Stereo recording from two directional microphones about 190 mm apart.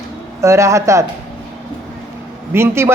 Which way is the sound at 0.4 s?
15° right (ahead or behind).